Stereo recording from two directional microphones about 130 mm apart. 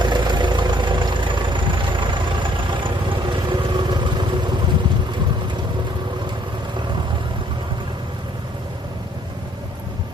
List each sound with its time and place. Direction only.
0.0 s vehicle: 35° right (ahead or behind)